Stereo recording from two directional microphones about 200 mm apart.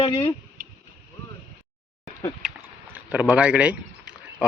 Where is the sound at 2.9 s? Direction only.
5° right (ahead or behind).